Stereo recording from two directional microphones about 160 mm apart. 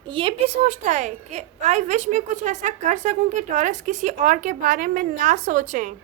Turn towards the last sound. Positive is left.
turn(degrees=-50)  # may be behind; listen again after turning